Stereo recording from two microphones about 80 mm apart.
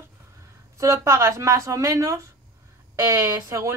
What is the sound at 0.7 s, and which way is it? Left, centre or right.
Speech, right.